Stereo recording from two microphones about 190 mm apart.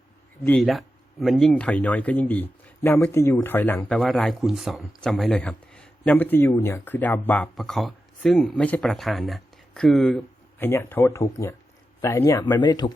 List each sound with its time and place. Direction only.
0.6 s speech: centre (ahead or behind)
10.6 s speech: 10° left (ahead or behind)